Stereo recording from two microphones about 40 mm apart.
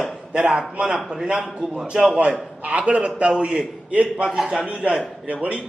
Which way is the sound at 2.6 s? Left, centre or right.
Right.